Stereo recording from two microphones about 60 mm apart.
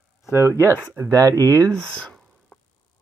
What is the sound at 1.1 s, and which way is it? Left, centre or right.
Speech, right.